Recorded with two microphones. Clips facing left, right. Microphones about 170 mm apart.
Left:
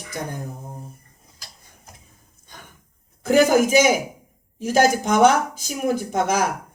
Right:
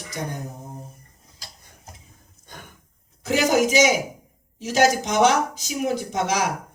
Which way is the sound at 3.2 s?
55° left (ahead or behind).